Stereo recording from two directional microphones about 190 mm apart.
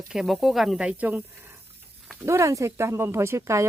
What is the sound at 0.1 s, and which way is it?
Speech, centre (ahead or behind).